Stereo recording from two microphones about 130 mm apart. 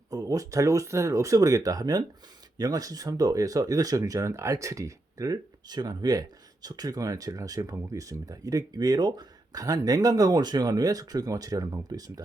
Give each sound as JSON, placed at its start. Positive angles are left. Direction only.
{"t": 0.1, "sound": "speech", "side_deg": -30}